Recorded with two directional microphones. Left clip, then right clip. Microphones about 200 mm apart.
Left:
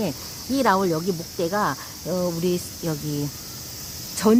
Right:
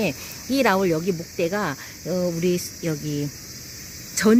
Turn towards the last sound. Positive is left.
turn(degrees=-25)  # may be behind; listen again after turning